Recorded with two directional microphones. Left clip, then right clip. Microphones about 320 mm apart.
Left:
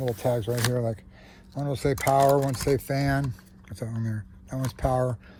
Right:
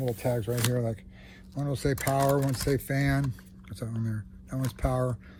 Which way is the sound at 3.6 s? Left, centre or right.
Left.